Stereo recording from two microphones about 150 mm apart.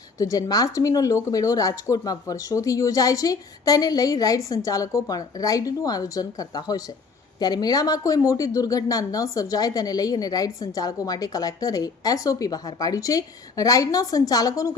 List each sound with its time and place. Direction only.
0.2 s speech: 25° left (ahead or behind)